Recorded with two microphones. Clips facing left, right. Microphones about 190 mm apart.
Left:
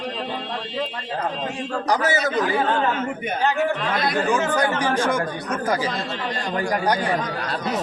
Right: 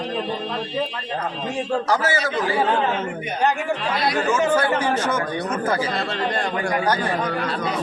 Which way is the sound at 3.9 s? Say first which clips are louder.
Right 1 dB; 50° left (ahead or behind).